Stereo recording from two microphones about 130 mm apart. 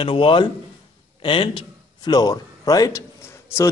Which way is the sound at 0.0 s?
40° left (ahead or behind).